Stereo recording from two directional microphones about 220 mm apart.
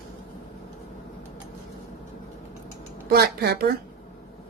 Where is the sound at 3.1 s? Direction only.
45° right (ahead or behind).